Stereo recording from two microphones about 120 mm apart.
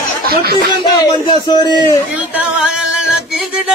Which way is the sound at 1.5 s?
35° left (ahead or behind).